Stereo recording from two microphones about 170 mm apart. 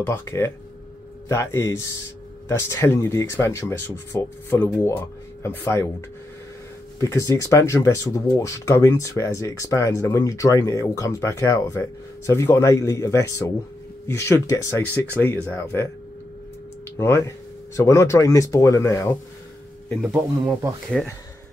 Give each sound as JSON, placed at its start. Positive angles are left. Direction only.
{"t": 0.0, "sound": "speech", "side_deg": 15}
{"t": 16.9, "sound": "speech", "side_deg": 15}
{"t": 19.9, "sound": "speech", "side_deg": 0}